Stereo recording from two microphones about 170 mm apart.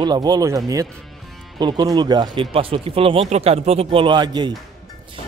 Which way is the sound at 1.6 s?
25° right (ahead or behind).